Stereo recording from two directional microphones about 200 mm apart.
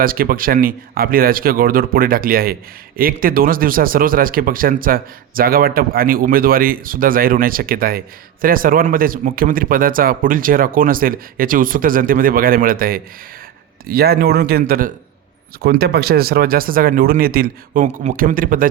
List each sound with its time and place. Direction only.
0.0 s speech: 45° right (ahead or behind)
15.6 s speech: 55° right (ahead or behind)
17.8 s speech: 35° right (ahead or behind)